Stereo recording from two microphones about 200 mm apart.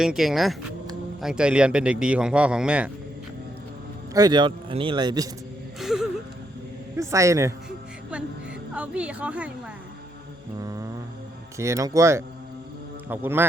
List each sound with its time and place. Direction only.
0.0 s speech: centre (ahead or behind)
4.1 s a man's voice: 20° right (ahead or behind)
5.8 s music: centre (ahead or behind)
6.9 s a woman's voice: 15° right (ahead or behind)
8.7 s a woman's voice: 5° right (ahead or behind)
10.6 s a woman's voice: 15° right (ahead or behind)